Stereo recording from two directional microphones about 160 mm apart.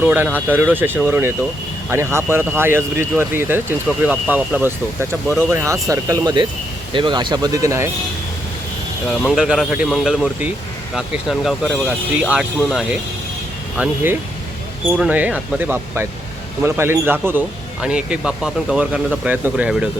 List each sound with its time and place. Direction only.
0.0 s speech: 10° right (ahead or behind)
9.2 s speech: centre (ahead or behind)